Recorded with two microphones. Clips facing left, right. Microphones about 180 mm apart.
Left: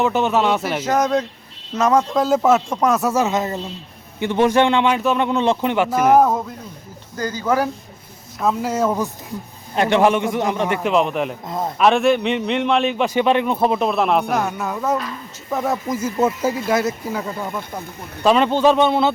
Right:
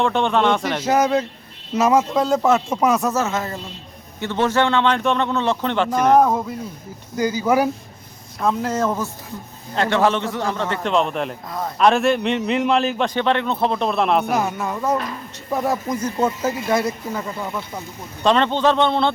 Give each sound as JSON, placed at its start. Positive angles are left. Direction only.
{"t": 0.0, "sound": "a man's voice", "side_deg": 5}
{"t": 0.9, "sound": "a man's voice", "side_deg": -10}
{"t": 3.1, "sound": "a man's voice", "side_deg": 15}
{"t": 7.2, "sound": "speech", "side_deg": -10}
{"t": 8.4, "sound": "a man's voice", "side_deg": 5}
{"t": 11.4, "sound": "a man's voice", "side_deg": 25}
{"t": 11.8, "sound": "a man's voice", "side_deg": 0}